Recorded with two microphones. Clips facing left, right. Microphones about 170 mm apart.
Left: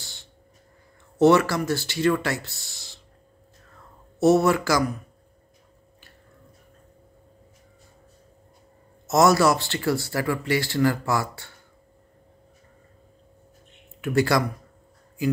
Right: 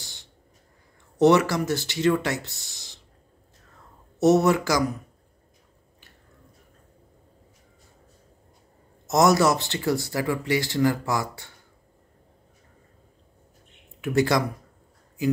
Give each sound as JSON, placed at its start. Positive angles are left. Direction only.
{"t": 0.0, "sound": "a sound", "side_deg": -15}
{"t": 1.1, "sound": "speech", "side_deg": -20}
{"t": 4.2, "sound": "speech", "side_deg": -20}
{"t": 9.0, "sound": "speech", "side_deg": -20}
{"t": 14.0, "sound": "speech", "side_deg": -20}